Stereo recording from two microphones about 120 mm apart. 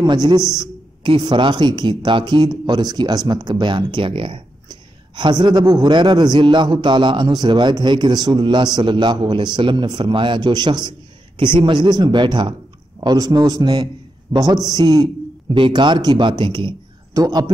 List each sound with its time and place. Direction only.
0.0 s speech: 35° right (ahead or behind)